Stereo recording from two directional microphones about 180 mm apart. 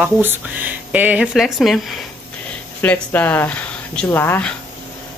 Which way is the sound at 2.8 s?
10° left (ahead or behind).